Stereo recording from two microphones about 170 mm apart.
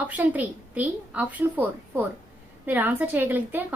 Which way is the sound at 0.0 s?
10° right (ahead or behind).